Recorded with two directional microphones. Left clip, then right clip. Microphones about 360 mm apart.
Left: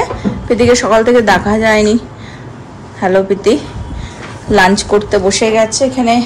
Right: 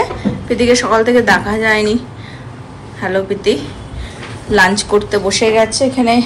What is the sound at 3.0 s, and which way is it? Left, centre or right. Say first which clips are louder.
A woman's voice: left 4 dB; centre.